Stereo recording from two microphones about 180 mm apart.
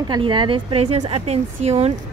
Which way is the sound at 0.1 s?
25° right (ahead or behind).